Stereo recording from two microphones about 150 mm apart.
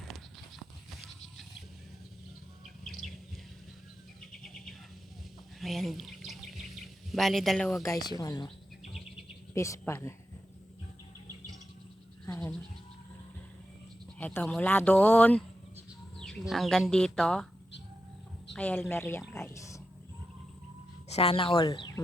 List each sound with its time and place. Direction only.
2.8 s bird: centre (ahead or behind)
4.3 s bird: centre (ahead or behind)
5.5 s bird vocalization: centre (ahead or behind)
7.8 s speech: 20° left (ahead or behind)
9.6 s speech: 20° left (ahead or behind)
14.2 s speech: 10° left (ahead or behind)
18.5 s speech: 10° left (ahead or behind)
19.3 s a sound: 20° left (ahead or behind)
21.1 s speech: 40° left (ahead or behind)